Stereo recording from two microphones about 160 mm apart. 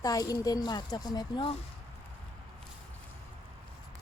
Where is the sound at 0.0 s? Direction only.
20° left (ahead or behind).